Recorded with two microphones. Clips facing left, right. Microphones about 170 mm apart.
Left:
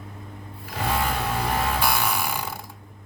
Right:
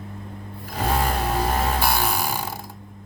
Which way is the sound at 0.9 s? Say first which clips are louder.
Right 2 dB; 40° right (ahead or behind).